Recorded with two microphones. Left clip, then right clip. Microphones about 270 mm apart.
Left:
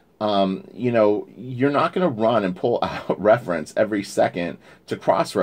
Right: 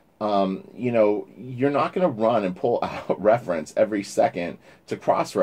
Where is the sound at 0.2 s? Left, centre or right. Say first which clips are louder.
Left 2 dB; left.